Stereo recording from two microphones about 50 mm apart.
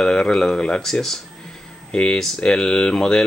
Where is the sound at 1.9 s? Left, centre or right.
Centre.